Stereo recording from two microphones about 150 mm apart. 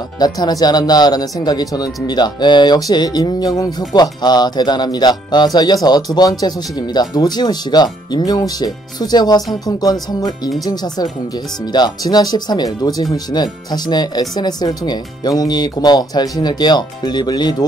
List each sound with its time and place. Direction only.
0.2 s speech: 25° left (ahead or behind)